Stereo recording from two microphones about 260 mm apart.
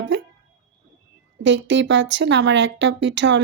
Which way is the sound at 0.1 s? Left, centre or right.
Right.